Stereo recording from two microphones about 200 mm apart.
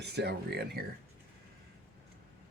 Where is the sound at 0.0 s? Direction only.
55° right (ahead or behind).